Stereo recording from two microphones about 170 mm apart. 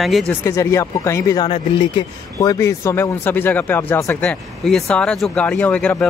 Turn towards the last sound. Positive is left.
turn(degrees=5)  # may be behind; listen again after turning